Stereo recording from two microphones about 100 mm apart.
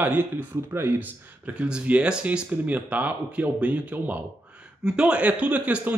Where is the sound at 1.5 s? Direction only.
10° right (ahead or behind).